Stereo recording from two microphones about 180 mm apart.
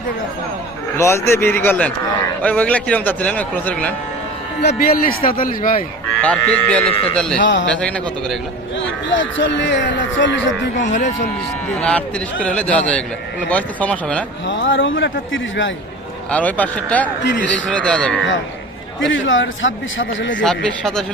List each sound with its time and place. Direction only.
0.9 s speech: 15° left (ahead or behind)
4.8 s speech: 55° left (ahead or behind)
6.2 s speech: 5° left (ahead or behind)
7.4 s a man's voice: 85° left
7.7 s a man's voice: 5° left (ahead or behind)
9.0 s speech: 90° left
10.8 s speech: 40° left (ahead or behind)
11.8 s speech: 5° left (ahead or behind)
14.4 s speech: 90° left
16.3 s a man's voice: 10° left (ahead or behind)
19.1 s speech: 90° left
20.4 s a man's voice: 5° left (ahead or behind)